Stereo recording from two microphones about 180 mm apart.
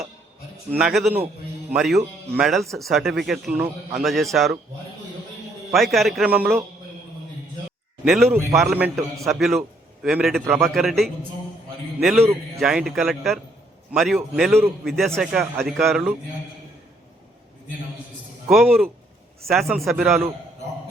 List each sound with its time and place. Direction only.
0.7 s a man's voice: 5° right (ahead or behind)
5.7 s a man's voice: centre (ahead or behind)
8.0 s a man's voice: centre (ahead or behind)
8.3 s a man's voice: 15° right (ahead or behind); by 11.1 s centre (ahead or behind)
12.5 s a man's voice: centre (ahead or behind)
18.4 s a man's voice: centre (ahead or behind)